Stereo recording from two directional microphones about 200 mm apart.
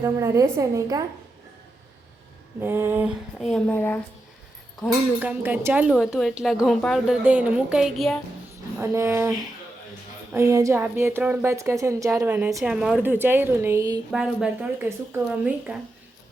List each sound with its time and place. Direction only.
0.0 s a woman's voice: 15° right (ahead or behind)
2.6 s a woman's voice: 10° right (ahead or behind)
3.7 s speech: 10° left (ahead or behind)
5.2 s a woman's voice: 10° right (ahead or behind)
8.8 s a woman's voice: 15° right (ahead or behind)
10.3 s a woman's voice: 15° right (ahead or behind)
14.1 s a woman's voice: 5° right (ahead or behind)